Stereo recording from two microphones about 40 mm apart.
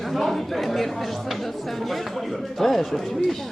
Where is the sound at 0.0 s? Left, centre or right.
Centre.